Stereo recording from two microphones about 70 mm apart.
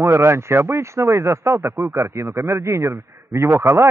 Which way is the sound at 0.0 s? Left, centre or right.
Right.